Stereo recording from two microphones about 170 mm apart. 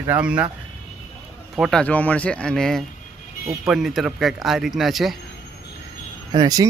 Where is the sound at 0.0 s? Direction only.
10° right (ahead or behind).